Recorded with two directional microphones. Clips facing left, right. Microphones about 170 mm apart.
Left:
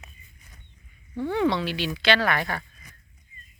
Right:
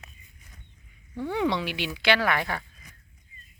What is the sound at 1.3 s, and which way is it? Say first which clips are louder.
Speech: left 3 dB; 15° right (ahead or behind).